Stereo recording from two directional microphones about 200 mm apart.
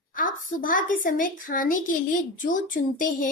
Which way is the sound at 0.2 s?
45° left (ahead or behind).